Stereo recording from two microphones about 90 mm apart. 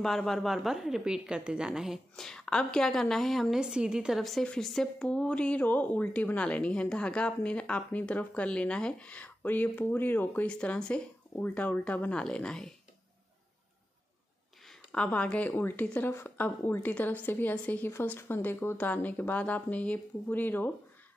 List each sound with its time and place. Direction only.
0.0 s a woman's voice: 5° left (ahead or behind)
4.2 s speech: 5° left (ahead or behind)
14.7 s a woman's voice: 10° left (ahead or behind)